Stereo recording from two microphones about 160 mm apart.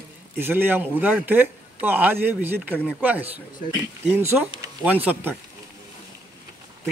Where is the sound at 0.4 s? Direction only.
15° right (ahead or behind).